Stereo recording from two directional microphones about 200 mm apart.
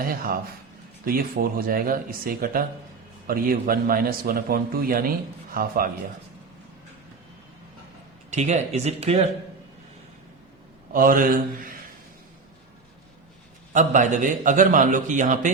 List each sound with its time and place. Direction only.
0.0 s a man's voice: 45° right (ahead or behind)
8.3 s a man's voice: 35° right (ahead or behind)
10.9 s a man's voice: 45° right (ahead or behind)
13.7 s a man's voice: 40° right (ahead or behind)